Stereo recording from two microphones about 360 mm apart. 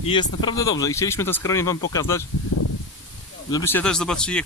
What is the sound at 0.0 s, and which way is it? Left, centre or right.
Speech, centre.